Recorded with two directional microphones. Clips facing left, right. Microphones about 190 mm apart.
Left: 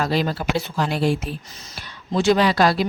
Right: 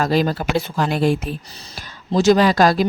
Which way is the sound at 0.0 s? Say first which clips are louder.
Right 3 dB; 45° right (ahead or behind).